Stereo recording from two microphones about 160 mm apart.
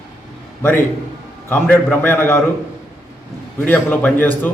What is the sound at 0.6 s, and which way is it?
A man's voice, 15° left (ahead or behind).